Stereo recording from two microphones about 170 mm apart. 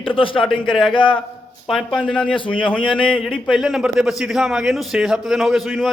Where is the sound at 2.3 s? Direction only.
30° left (ahead or behind).